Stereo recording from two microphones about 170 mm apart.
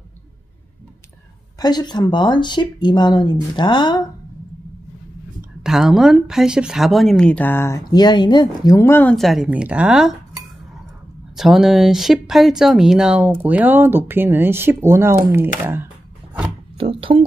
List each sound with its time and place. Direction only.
1.6 s speech: 25° left (ahead or behind)
5.6 s speech: centre (ahead or behind); by 9.1 s 15° left (ahead or behind)
9.1 s speech: centre (ahead or behind)
16.7 s speech: 30° right (ahead or behind)